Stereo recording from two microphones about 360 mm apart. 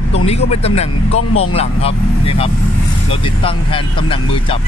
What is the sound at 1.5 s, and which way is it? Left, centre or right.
Speech, centre.